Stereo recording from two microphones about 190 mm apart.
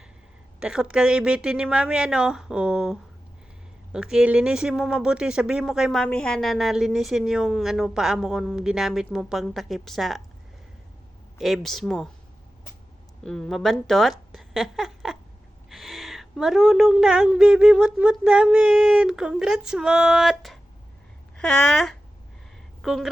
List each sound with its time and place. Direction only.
0.6 s speech: 5° right (ahead or behind)
11.3 s speech: centre (ahead or behind)
13.2 s a woman's voice: centre (ahead or behind)